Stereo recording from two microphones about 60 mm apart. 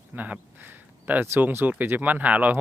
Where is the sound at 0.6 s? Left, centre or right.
Right.